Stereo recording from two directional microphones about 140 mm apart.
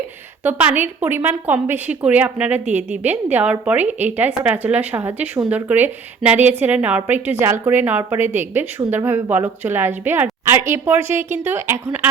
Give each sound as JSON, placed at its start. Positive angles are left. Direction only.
{"t": 0.4, "sound": "speech", "side_deg": -15}